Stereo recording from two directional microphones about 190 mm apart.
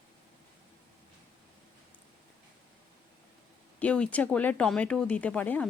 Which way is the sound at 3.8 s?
5° left (ahead or behind).